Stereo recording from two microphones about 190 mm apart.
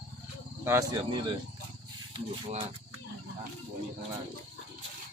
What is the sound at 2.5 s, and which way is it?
Speech, 30° right (ahead or behind).